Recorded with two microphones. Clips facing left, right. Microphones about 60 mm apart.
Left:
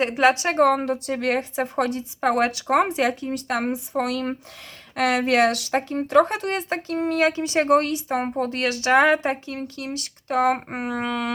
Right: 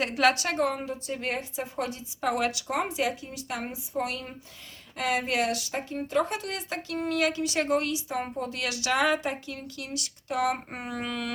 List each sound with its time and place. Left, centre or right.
0.0 s a woman's voice: left
0.5 s a woman's voice: left
6.3 s a woman's voice: left